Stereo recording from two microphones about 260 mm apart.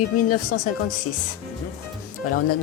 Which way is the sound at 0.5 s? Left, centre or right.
Left.